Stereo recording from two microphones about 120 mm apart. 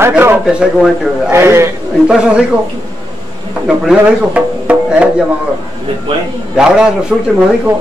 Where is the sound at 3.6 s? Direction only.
5° right (ahead or behind).